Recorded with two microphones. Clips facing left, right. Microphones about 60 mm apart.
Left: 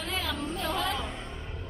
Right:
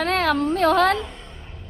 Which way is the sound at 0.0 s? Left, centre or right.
Right.